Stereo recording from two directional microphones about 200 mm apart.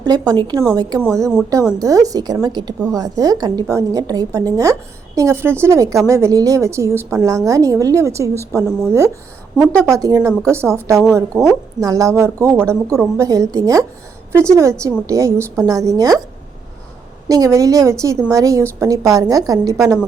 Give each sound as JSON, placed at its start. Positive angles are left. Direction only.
{"t": 0.0, "sound": "a woman's voice", "side_deg": -20}
{"t": 17.2, "sound": "a woman's voice", "side_deg": -15}